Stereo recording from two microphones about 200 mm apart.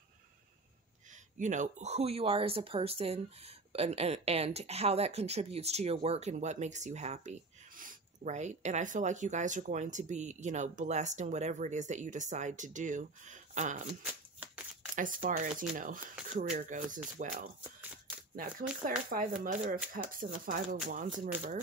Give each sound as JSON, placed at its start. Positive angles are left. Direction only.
{"t": 1.4, "sound": "speech", "side_deg": -40}
{"t": 14.0, "sound": "shuffling cards", "side_deg": -5}
{"t": 15.0, "sound": "speech", "side_deg": -40}